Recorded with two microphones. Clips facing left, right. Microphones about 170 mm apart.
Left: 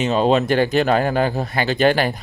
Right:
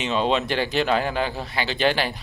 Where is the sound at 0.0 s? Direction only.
45° left (ahead or behind).